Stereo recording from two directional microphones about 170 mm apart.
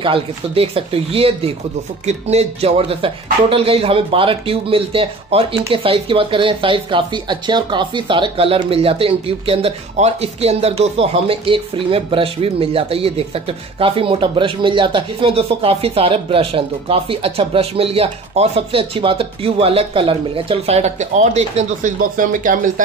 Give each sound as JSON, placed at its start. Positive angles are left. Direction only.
{"t": 0.0, "sound": "speech", "side_deg": -30}